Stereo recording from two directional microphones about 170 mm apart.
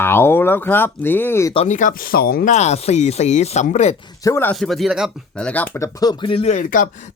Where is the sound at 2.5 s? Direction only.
40° left (ahead or behind).